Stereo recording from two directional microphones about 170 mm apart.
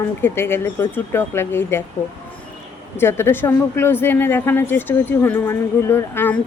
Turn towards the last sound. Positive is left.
turn(degrees=15)  # may be behind; listen again after turning